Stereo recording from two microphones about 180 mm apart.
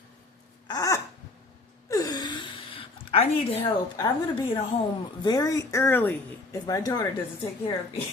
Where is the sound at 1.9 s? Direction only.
20° left (ahead or behind).